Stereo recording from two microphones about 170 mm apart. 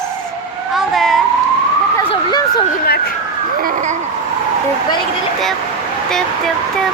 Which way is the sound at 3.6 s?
55° right (ahead or behind).